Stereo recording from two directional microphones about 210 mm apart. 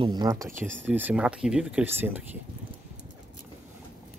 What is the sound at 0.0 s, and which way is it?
Speech, 20° right (ahead or behind).